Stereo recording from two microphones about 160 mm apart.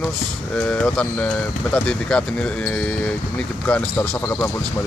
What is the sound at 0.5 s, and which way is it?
Speech, 10° left (ahead or behind).